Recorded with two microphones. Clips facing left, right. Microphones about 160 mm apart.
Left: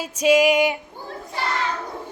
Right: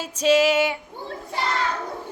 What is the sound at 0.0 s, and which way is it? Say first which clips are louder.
Female singing: left 2 dB; 10° left (ahead or behind).